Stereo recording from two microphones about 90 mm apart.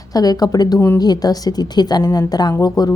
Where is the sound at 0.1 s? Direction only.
45° left (ahead or behind).